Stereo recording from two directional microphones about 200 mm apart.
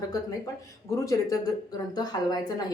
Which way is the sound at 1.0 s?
15° left (ahead or behind).